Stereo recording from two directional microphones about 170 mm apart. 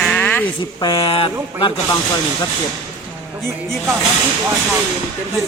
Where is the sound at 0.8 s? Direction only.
35° left (ahead or behind).